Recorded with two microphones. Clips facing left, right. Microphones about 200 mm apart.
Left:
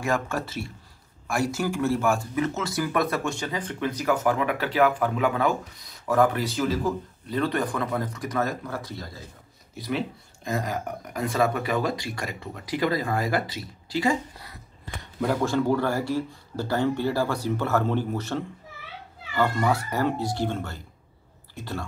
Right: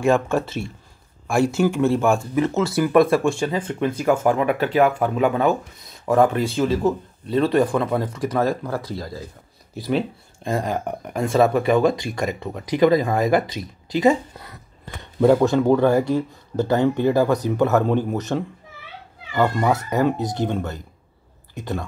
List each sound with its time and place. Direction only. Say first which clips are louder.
0.0 s speech: right 8 dB; 25° right (ahead or behind)
10.4 s speech: right 5 dB; 30° right (ahead or behind)